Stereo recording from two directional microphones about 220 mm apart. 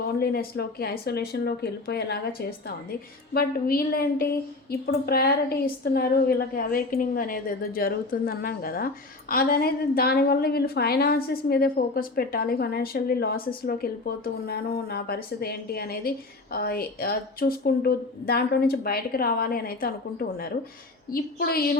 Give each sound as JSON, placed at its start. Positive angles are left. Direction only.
{"t": 0.0, "sound": "a woman's voice", "side_deg": 45}
{"t": 3.3, "sound": "a woman's voice", "side_deg": 45}